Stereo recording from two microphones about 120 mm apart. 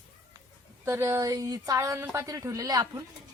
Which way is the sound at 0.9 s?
25° right (ahead or behind).